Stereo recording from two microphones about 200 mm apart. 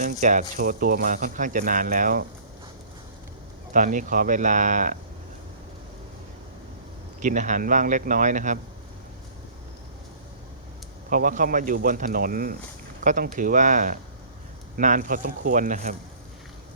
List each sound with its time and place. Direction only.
0.0 s speech: 40° right (ahead or behind)
3.7 s speech: 40° right (ahead or behind)
7.2 s speech: 40° right (ahead or behind)
11.1 s speech: 40° right (ahead or behind)